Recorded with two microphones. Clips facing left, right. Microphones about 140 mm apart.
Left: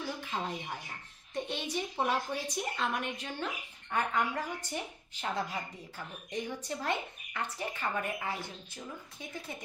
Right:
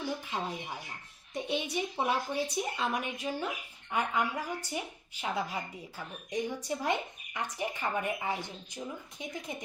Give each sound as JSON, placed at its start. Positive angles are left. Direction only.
{"t": 1.3, "sound": "a woman's voice", "side_deg": -10}